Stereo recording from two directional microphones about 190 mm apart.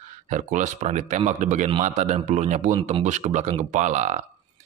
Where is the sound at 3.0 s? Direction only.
40° right (ahead or behind).